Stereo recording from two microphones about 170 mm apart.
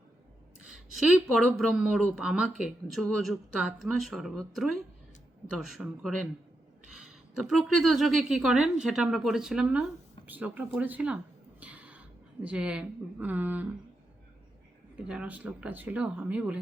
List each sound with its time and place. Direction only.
0.7 s a woman's voice: centre (ahead or behind)
11.6 s a sound: 10° right (ahead or behind)
12.4 s speech: 5° right (ahead or behind)
15.0 s speech: 5° right (ahead or behind)